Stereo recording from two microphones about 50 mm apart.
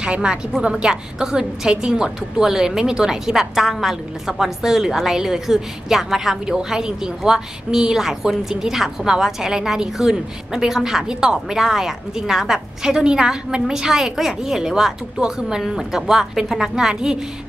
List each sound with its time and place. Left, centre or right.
0.0 s a woman's voice: centre